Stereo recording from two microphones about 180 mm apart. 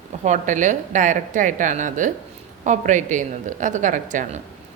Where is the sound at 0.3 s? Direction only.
45° right (ahead or behind).